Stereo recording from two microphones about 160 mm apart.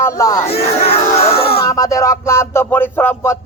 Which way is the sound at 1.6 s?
20° left (ahead or behind).